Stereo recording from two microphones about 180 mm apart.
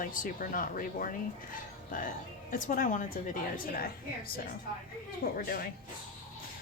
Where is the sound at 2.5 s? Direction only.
45° left (ahead or behind).